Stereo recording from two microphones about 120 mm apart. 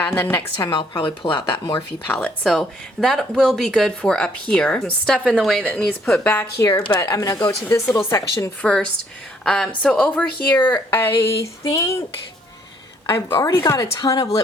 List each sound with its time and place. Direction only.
0.0 s a woman's voice: 20° left (ahead or behind)
0.6 s speech: 40° left (ahead or behind)
2.1 s a woman's voice: 5° left (ahead or behind); by 8.4 s 25° left (ahead or behind)
8.6 s a woman's voice: 10° left (ahead or behind); by 12.0 s 25° left (ahead or behind)
13.1 s speech: 20° left (ahead or behind)